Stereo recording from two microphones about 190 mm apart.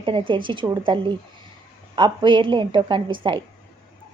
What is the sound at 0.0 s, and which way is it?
A woman's voice, 25° right (ahead or behind).